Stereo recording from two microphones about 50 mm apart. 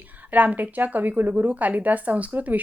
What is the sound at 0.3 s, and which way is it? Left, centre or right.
A woman's voice, right.